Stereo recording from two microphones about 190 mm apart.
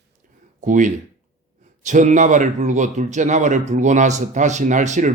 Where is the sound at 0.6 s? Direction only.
40° right (ahead or behind).